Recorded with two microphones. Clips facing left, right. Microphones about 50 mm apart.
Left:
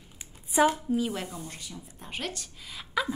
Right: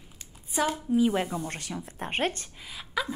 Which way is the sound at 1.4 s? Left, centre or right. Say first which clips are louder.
Right 7 dB; right.